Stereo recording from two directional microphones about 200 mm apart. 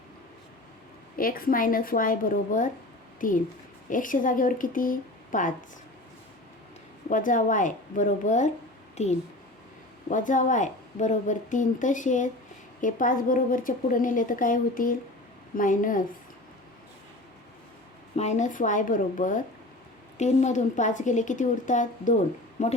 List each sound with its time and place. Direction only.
1.2 s a woman's voice: 45° left (ahead or behind)
7.1 s a woman's voice: 40° left (ahead or behind)
18.2 s a woman's voice: 35° left (ahead or behind)